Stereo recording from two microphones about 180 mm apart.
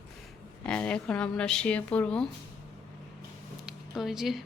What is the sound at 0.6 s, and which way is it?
Speech, 5° left (ahead or behind).